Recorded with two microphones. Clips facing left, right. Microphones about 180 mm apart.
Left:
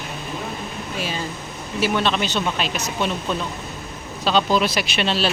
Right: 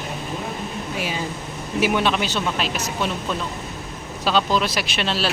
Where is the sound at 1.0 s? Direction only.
15° right (ahead or behind).